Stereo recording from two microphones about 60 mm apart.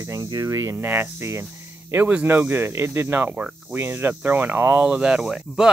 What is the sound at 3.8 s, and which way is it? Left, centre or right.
Speech, right.